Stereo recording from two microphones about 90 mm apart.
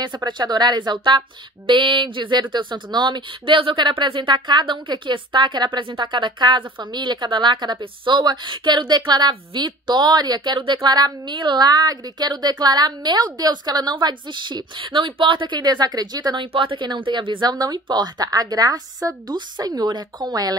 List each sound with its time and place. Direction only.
0.0 s a woman's voice: 55° right (ahead or behind)
16.5 s speech: 70° right (ahead or behind)
17.5 s a woman's voice: 50° right (ahead or behind)